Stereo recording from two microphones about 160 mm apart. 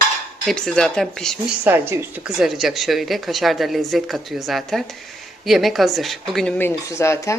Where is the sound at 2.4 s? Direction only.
Centre (ahead or behind).